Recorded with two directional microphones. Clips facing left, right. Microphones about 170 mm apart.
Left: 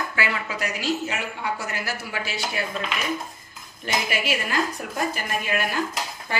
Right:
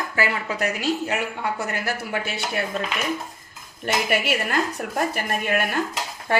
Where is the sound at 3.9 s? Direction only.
60° right (ahead or behind).